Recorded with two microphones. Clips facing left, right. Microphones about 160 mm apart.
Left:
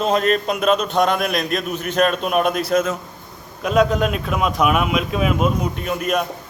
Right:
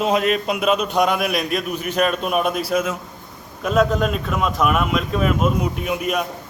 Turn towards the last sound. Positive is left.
turn(degrees=-5)  # may be behind; listen again after turning